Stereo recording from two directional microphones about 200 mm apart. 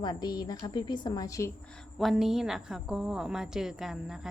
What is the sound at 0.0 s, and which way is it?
A woman's voice, 20° left (ahead or behind).